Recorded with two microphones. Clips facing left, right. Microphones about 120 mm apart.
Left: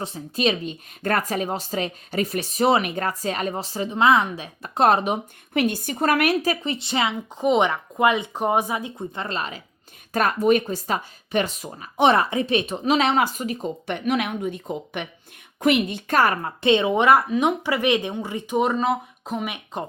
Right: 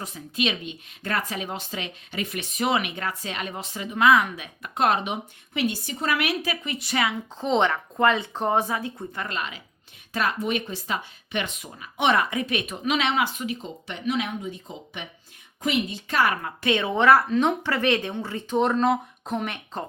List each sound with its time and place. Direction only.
0.0 s speech: 35° left (ahead or behind)
10.1 s a woman's voice: 45° left (ahead or behind)
16.6 s speech: 20° left (ahead or behind); by 19.5 s 5° left (ahead or behind)